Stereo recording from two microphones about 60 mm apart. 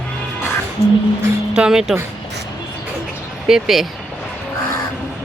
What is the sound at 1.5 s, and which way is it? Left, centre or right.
Speech, centre.